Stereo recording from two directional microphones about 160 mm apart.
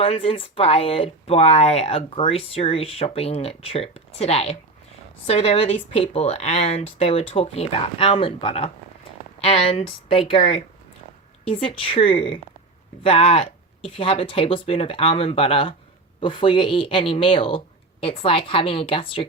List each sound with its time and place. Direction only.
0.0 s speech: 35° left (ahead or behind)